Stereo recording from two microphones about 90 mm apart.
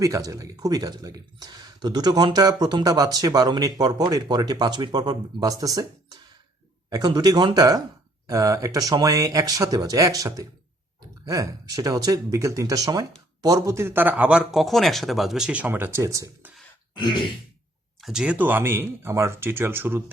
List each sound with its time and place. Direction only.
0.0 s speech: 40° right (ahead or behind); by 14.3 s 20° right (ahead or behind)
14.3 s speech: 10° right (ahead or behind)
14.6 s speech: centre (ahead or behind); by 16.0 s 20° right (ahead or behind)
16.0 s speech: 35° right (ahead or behind)
18.0 s speech: 5° right (ahead or behind); by 20.0 s 25° right (ahead or behind)